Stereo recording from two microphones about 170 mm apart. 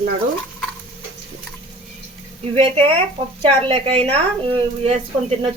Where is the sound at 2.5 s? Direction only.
30° right (ahead or behind).